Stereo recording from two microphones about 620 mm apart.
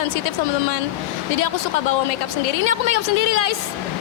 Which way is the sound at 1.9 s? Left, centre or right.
Left.